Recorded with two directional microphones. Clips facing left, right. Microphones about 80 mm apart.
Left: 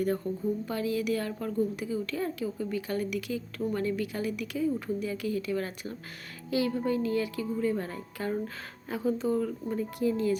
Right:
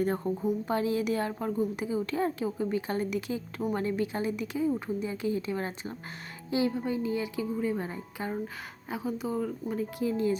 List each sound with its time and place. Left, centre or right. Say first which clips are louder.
0.0 s a woman's voice: right 1 dB; right; by 10.2 s centre